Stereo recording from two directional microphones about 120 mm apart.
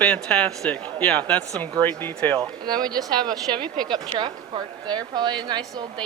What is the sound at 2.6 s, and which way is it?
A woman's voice, 35° right (ahead or behind).